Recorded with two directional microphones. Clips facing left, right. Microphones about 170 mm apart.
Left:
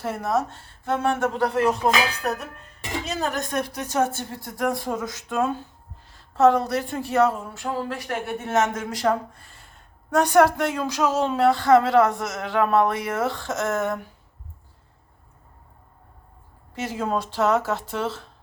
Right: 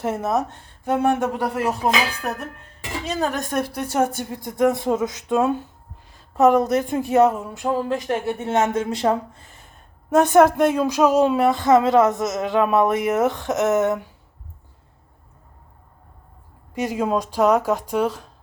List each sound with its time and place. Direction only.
0.0 s speech: 20° right (ahead or behind)
16.7 s speech: 15° right (ahead or behind)